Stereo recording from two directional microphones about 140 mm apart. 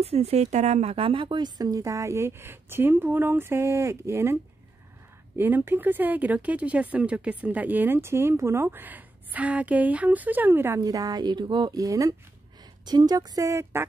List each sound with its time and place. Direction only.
0.0 s speech: 50° right (ahead or behind); by 13.8 s 20° right (ahead or behind)